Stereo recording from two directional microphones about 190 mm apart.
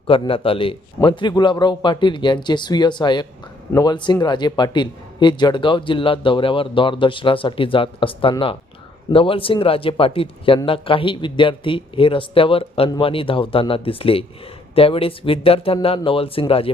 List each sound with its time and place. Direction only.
0.1 s a man's voice: 30° left (ahead or behind)